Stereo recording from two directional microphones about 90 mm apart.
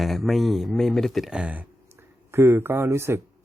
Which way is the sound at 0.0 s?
Centre (ahead or behind).